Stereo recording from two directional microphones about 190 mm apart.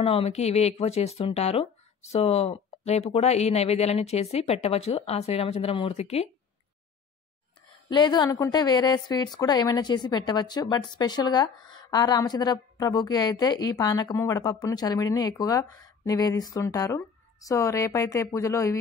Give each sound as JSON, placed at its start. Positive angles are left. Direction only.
{"t": 0.0, "sound": "speech", "side_deg": 30}
{"t": 7.9, "sound": "a woman's voice", "side_deg": 25}